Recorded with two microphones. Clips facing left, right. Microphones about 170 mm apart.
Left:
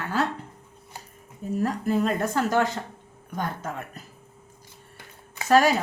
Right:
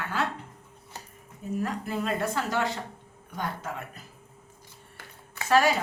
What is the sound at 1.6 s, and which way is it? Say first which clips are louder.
A woman's voice: left 7 dB; 40° left (ahead or behind).